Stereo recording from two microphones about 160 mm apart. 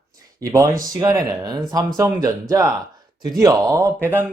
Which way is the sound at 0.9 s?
20° right (ahead or behind).